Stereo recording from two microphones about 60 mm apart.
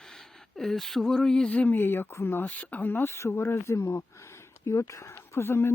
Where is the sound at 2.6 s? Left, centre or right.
Left.